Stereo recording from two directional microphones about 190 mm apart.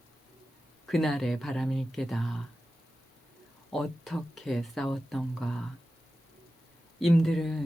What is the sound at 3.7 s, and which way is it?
A man's voice, centre (ahead or behind).